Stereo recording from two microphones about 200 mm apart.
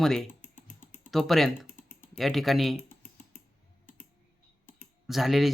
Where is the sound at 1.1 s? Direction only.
Centre (ahead or behind).